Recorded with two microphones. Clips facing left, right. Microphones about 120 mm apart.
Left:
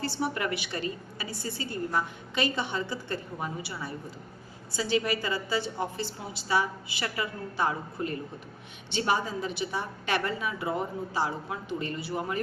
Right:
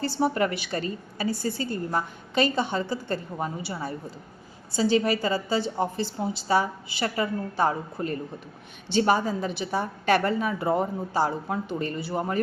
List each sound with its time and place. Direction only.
0.0 s a woman's voice: 35° right (ahead or behind)